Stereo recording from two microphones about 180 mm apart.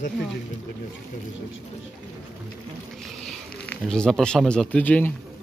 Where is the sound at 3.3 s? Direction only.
5° left (ahead or behind).